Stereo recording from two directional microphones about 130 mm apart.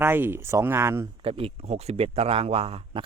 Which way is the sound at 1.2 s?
45° right (ahead or behind).